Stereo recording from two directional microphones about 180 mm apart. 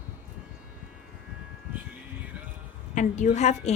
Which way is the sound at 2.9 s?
40° left (ahead or behind).